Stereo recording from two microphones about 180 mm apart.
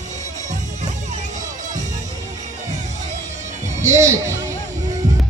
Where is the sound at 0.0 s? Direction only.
40° right (ahead or behind).